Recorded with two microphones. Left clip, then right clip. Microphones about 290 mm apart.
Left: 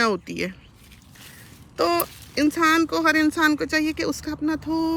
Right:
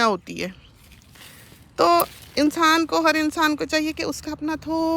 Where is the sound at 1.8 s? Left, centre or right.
Centre.